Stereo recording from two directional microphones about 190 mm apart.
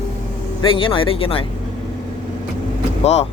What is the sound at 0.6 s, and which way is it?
Speech, 30° left (ahead or behind).